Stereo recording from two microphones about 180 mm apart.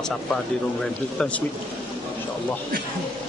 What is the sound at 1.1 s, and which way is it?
Speech, 5° left (ahead or behind).